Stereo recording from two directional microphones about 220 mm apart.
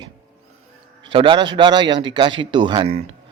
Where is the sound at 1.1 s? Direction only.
25° right (ahead or behind).